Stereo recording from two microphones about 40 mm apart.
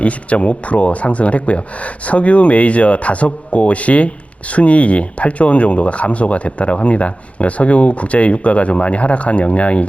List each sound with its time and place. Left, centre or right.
0.0 s speech: left